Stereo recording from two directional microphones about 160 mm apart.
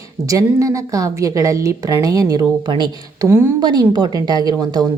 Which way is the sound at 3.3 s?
15° right (ahead or behind).